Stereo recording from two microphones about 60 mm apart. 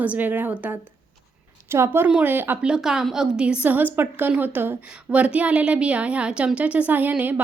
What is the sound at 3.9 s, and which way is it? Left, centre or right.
Speech, right.